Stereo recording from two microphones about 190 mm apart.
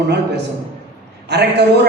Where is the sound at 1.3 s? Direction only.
60° right (ahead or behind).